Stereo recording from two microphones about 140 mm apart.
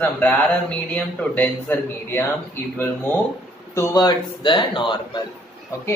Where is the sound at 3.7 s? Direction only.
25° left (ahead or behind).